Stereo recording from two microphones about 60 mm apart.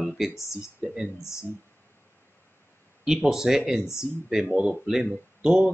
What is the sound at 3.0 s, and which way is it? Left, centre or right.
A man's voice, centre.